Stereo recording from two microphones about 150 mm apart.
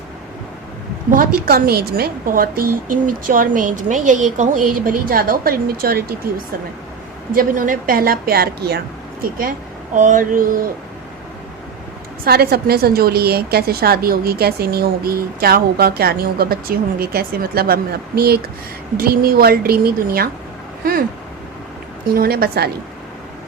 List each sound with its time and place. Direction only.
1.1 s a woman's voice: 75° right (ahead or behind)
7.3 s a woman's voice: 65° right (ahead or behind); by 8.8 s 90° right
9.2 s a woman's voice: 70° right (ahead or behind)
12.2 s a woman's voice: 90° right
22.1 s a woman's voice: 85° right